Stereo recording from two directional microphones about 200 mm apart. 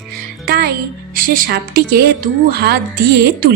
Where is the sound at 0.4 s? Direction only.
50° right (ahead or behind).